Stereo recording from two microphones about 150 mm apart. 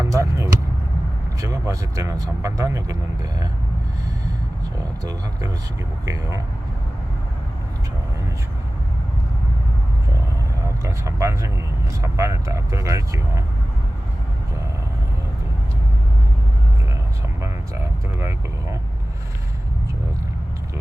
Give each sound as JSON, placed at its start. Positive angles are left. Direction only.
{"t": 0.0, "sound": "vehicle", "side_deg": -20}
{"t": 1.4, "sound": "speech", "side_deg": -20}
{"t": 4.8, "sound": "speech", "side_deg": -25}
{"t": 10.8, "sound": "speech", "side_deg": -20}
{"t": 17.4, "sound": "speech", "side_deg": -20}